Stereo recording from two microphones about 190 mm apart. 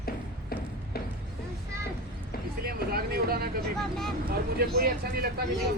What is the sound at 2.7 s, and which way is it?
Speech, 55° right (ahead or behind).